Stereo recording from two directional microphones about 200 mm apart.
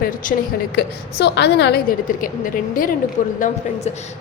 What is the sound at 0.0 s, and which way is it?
Speech, 45° left (ahead or behind).